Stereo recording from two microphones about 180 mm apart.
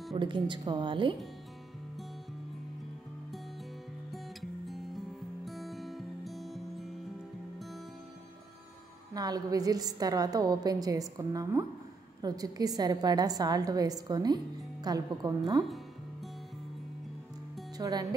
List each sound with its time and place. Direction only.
0.1 s a woman's voice: 25° right (ahead or behind)
4.1 s music: centre (ahead or behind)
9.1 s a woman's voice: 20° right (ahead or behind)
17.7 s speech: 20° right (ahead or behind)